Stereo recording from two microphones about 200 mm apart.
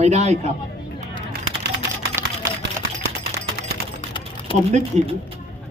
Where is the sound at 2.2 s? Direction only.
10° right (ahead or behind).